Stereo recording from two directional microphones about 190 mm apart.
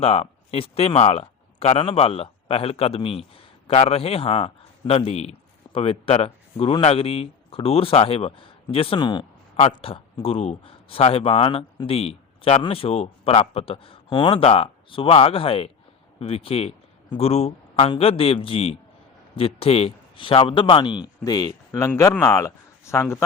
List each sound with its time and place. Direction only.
0.0 s speech: 30° left (ahead or behind)
9.6 s a man's voice: 35° left (ahead or behind); by 23.2 s 15° left (ahead or behind)